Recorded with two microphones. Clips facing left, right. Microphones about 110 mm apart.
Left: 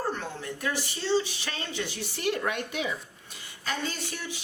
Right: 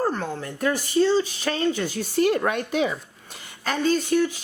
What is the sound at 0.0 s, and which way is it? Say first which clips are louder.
Speech: right 7 dB; 45° right (ahead or behind).